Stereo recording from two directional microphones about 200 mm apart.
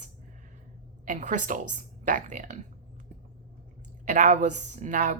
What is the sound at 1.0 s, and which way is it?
Speech, 40° right (ahead or behind).